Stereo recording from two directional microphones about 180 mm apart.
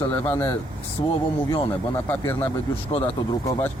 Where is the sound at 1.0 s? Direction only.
30° left (ahead or behind).